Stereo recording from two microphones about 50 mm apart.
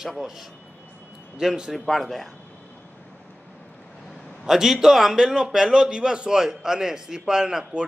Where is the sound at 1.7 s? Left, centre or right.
Centre.